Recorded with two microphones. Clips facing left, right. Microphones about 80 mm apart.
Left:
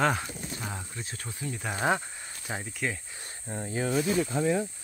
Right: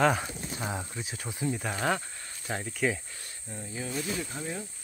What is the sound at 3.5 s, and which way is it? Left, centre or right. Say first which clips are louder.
Speech: left 7 dB; left.